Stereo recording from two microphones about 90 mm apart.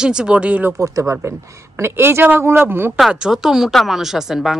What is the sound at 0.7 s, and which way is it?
Speech, 35° right (ahead or behind).